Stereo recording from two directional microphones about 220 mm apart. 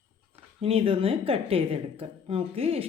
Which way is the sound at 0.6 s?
25° right (ahead or behind).